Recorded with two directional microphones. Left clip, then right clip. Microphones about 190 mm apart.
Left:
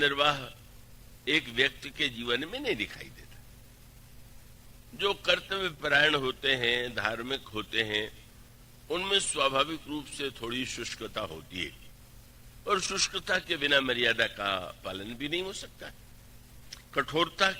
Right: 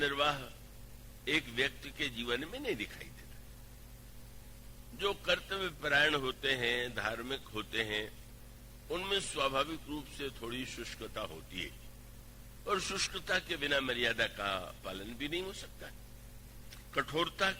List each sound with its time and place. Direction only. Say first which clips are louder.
0.0 s a man's voice: left 6 dB; 30° right (ahead or behind)
4.9 s a man's voice: left 6 dB; 35° right (ahead or behind)